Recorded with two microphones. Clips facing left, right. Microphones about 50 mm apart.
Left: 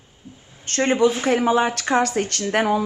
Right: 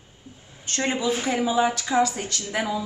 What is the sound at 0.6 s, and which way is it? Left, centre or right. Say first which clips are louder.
A man's voice: left 7 dB; left.